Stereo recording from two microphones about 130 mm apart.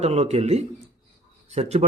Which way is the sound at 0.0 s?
55° right (ahead or behind).